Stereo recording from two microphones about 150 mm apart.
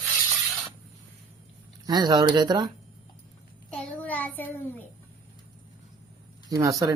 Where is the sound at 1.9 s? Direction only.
25° right (ahead or behind).